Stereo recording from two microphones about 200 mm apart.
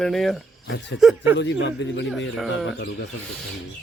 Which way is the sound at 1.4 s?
60° left (ahead or behind).